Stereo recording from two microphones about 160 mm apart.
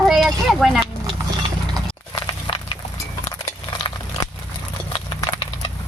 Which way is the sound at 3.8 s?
30° left (ahead or behind).